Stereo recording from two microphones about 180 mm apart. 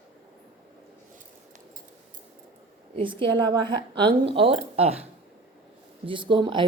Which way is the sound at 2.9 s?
30° right (ahead or behind).